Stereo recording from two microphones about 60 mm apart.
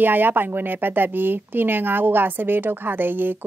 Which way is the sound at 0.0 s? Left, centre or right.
Right.